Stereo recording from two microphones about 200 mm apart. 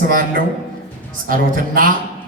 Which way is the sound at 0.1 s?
45° right (ahead or behind).